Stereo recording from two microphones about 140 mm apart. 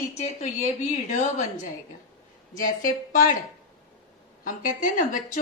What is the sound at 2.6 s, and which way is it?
Speech, 75° left (ahead or behind).